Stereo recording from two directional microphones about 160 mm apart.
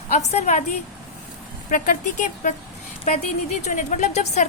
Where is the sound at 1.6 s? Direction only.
55° left (ahead or behind).